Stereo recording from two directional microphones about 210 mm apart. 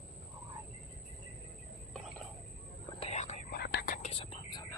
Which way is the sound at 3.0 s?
30° left (ahead or behind).